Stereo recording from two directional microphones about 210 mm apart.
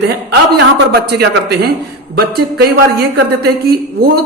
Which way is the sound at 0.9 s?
50° right (ahead or behind).